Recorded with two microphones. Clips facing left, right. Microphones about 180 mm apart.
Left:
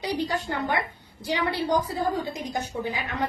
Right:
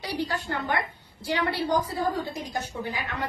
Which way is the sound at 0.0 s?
15° left (ahead or behind).